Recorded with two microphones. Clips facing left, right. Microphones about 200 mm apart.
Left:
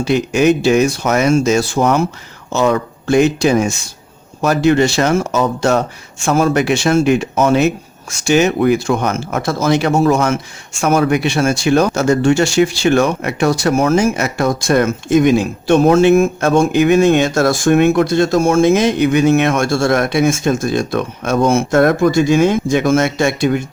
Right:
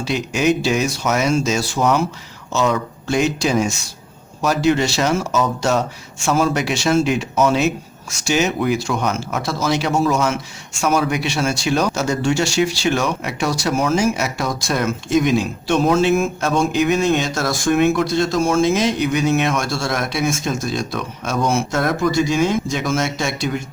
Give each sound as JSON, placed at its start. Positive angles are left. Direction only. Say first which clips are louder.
{"t": 0.0, "sound": "speech", "louder": "left 6 dB", "side_deg": 55}